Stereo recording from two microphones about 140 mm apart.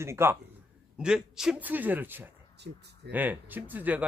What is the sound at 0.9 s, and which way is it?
A man's voice, 5° right (ahead or behind).